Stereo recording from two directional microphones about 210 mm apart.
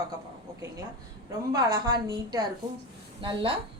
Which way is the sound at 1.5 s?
20° right (ahead or behind).